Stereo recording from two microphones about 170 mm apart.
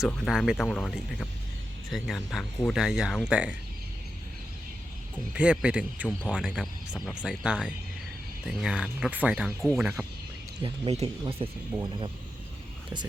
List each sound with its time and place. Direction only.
0.0 s speech: centre (ahead or behind)
5.3 s speech: 5° right (ahead or behind)
10.6 s speech: 35° right (ahead or behind)